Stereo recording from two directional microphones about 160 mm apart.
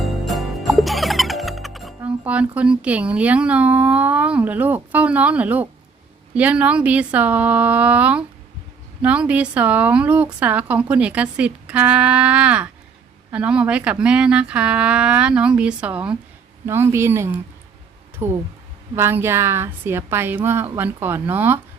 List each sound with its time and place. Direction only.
0.3 s music: centre (ahead or behind)
2.0 s a woman's voice: 10° right (ahead or behind)